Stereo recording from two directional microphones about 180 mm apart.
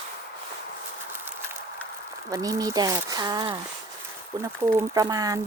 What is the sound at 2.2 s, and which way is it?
Speech, 20° right (ahead or behind).